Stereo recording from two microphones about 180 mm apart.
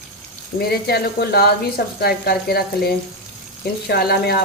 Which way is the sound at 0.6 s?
60° left (ahead or behind).